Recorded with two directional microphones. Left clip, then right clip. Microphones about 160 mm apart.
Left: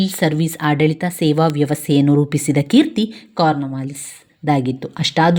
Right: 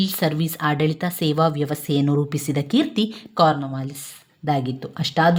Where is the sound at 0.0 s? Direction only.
15° left (ahead or behind).